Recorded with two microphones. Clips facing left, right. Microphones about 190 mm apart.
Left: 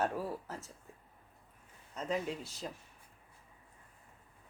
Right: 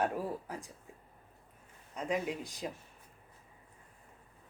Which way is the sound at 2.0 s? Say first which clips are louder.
Right 2 dB; 10° right (ahead or behind).